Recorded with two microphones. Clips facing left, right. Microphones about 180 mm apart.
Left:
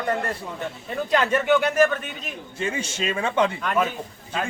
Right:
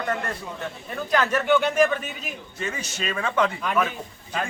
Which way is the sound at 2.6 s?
30° left (ahead or behind).